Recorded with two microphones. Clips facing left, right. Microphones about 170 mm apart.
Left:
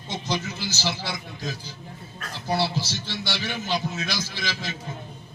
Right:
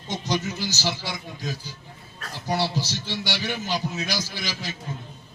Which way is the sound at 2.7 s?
40° right (ahead or behind).